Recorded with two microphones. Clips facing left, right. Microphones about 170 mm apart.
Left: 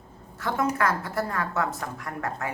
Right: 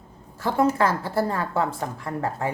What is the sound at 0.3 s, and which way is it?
A woman's voice, 30° right (ahead or behind).